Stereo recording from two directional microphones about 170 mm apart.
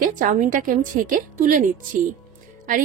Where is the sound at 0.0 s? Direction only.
50° right (ahead or behind).